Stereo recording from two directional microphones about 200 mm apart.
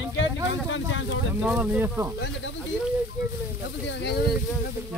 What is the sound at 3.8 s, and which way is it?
Speech, 60° left (ahead or behind).